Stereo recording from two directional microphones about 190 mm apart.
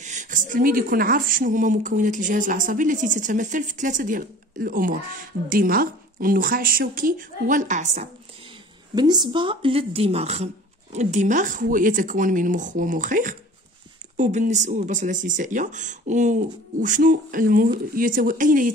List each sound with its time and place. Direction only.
0.0 s speech: 40° right (ahead or behind)
8.9 s speech: 20° right (ahead or behind); by 18.7 s 45° right (ahead or behind)